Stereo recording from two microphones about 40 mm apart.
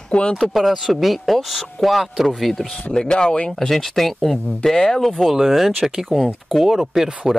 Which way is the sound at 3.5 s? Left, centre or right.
Centre.